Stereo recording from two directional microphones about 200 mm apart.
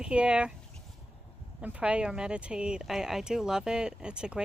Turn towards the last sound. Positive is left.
turn(degrees=-5)  # may be behind; listen again after turning